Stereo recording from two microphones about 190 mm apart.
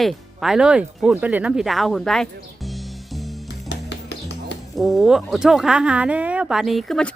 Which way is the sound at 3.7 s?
65° left (ahead or behind).